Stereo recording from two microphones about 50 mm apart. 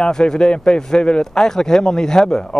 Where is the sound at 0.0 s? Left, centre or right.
Centre.